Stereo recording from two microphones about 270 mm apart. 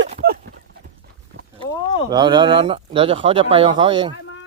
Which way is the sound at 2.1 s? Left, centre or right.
Centre.